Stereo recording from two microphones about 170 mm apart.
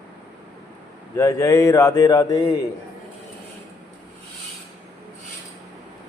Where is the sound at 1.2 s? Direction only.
15° left (ahead or behind).